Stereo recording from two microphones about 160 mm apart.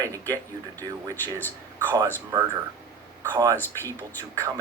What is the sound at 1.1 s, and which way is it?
Speech, 10° left (ahead or behind).